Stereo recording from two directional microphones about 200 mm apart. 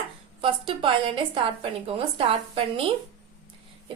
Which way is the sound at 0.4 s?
25° right (ahead or behind).